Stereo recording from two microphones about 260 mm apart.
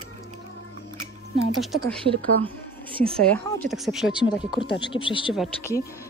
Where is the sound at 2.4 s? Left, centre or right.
Right.